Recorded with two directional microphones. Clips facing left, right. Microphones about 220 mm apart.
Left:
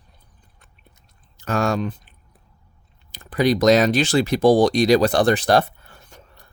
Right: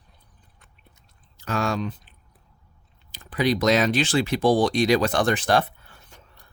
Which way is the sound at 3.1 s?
45° left (ahead or behind).